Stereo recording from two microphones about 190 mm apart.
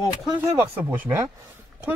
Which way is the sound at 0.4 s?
10° right (ahead or behind).